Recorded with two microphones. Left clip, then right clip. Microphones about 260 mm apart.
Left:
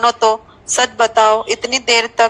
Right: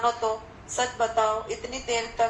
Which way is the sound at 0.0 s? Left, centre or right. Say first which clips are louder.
Left 12 dB; left.